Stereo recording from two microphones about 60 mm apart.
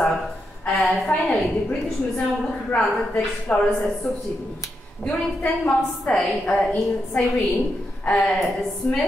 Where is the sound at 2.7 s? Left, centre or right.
Left.